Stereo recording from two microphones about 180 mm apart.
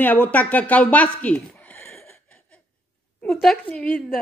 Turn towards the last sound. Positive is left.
turn(degrees=0)  # may be behind; listen again after turning